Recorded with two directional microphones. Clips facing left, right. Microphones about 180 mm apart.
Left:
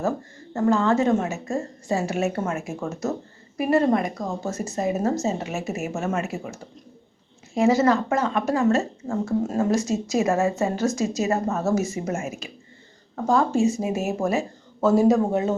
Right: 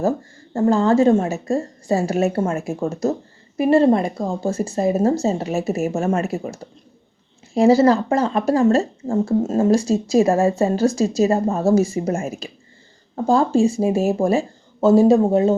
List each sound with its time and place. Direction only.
0.5 s a woman's voice: 30° right (ahead or behind)